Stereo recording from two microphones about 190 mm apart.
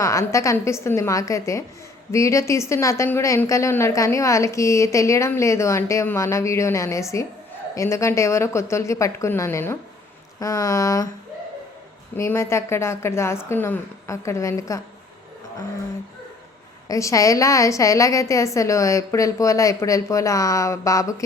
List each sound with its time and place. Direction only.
0.0 s a woman's voice: 15° left (ahead or behind)
12.1 s a woman's voice: 15° left (ahead or behind)
16.9 s a woman's voice: 15° left (ahead or behind)